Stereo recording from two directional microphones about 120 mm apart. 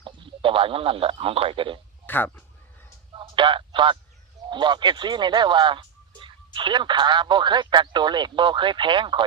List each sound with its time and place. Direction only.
0.0 s a man's voice: 45° right (ahead or behind)
2.0 s speech: 15° left (ahead or behind)
3.1 s a sound: 45° right (ahead or behind)
4.4 s speech: 40° right (ahead or behind)